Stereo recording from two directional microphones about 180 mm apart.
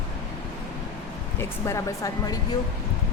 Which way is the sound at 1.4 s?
15° left (ahead or behind).